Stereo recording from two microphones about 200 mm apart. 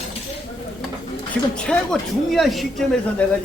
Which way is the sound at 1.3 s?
5° left (ahead or behind).